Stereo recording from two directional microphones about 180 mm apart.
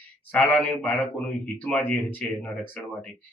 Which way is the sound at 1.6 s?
10° left (ahead or behind).